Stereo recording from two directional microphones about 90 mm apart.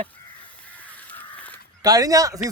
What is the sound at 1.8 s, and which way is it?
Speech, 45° right (ahead or behind).